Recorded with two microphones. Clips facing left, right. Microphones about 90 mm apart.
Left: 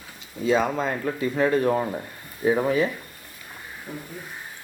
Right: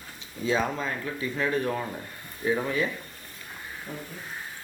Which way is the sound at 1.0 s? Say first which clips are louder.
Left 6 dB; 45° left (ahead or behind).